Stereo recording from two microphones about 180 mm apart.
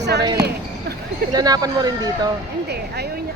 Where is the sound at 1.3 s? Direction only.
20° right (ahead or behind).